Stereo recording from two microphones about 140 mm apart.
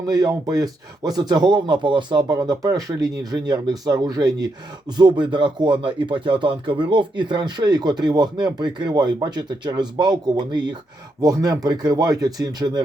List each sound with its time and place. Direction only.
0.0 s speech: 25° right (ahead or behind)